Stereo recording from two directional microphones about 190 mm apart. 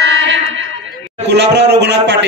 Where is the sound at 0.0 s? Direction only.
75° right (ahead or behind).